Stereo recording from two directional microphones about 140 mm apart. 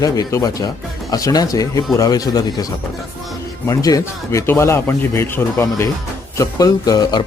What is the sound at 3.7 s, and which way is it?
Speech, 25° left (ahead or behind).